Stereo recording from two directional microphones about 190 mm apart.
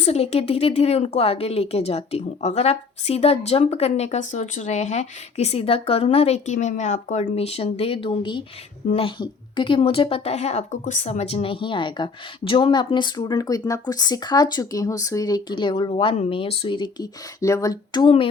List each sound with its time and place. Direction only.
0.0 s a woman's voice: 35° left (ahead or behind)